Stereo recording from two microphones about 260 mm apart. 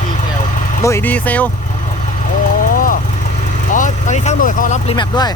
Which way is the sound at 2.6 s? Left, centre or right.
Left.